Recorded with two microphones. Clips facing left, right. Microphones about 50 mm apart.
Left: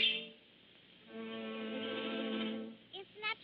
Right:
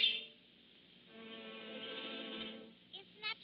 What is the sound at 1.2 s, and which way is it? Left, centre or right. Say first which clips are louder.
Music: left 8 dB; left.